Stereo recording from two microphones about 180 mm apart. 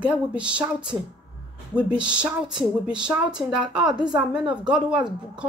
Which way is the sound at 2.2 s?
5° right (ahead or behind).